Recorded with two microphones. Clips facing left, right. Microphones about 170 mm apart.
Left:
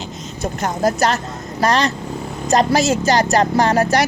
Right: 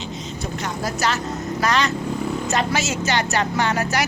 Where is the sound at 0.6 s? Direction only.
45° left (ahead or behind).